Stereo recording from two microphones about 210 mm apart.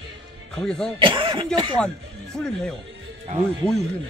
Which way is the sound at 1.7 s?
5° left (ahead or behind).